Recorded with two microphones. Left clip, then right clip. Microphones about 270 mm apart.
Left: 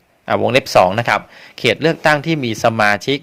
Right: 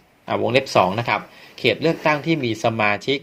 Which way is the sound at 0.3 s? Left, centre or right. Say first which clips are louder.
Left 5 dB; left.